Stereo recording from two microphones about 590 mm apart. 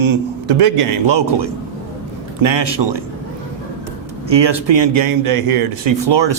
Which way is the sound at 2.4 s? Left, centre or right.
Right.